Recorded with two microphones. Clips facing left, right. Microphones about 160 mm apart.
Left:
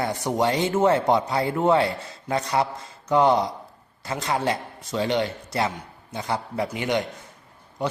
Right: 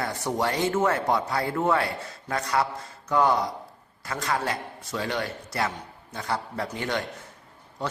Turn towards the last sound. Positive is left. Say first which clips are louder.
# left 4 dB
turn(degrees=15)  # may be behind; listen again after turning